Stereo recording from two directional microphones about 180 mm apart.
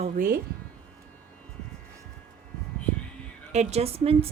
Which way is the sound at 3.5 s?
40° right (ahead or behind).